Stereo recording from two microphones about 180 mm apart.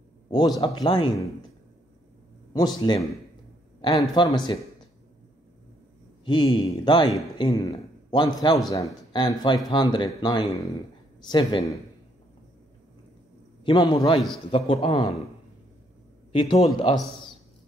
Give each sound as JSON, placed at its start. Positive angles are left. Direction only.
{"t": 0.3, "sound": "a man's voice", "side_deg": 25}
{"t": 2.5, "sound": "a man's voice", "side_deg": 25}
{"t": 4.1, "sound": "a man's voice", "side_deg": 25}
{"t": 6.2, "sound": "a man's voice", "side_deg": 25}
{"t": 13.7, "sound": "a man's voice", "side_deg": 25}
{"t": 16.3, "sound": "a man's voice", "side_deg": 30}